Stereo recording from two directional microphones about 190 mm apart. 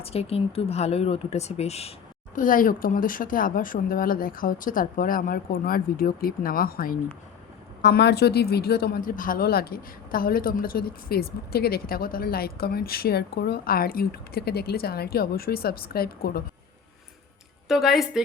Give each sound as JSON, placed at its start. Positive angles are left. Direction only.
{"t": 0.0, "sound": "speech", "side_deg": 30}
{"t": 2.3, "sound": "a woman's voice", "side_deg": 45}
{"t": 17.7, "sound": "a woman's voice", "side_deg": 0}